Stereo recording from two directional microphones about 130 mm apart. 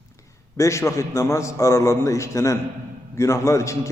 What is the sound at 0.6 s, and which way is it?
A man's voice, 25° left (ahead or behind).